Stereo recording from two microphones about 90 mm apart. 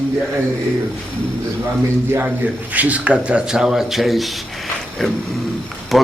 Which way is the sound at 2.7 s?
15° right (ahead or behind).